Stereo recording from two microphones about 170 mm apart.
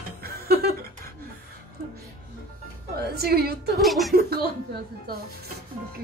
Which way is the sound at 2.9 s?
65° right (ahead or behind).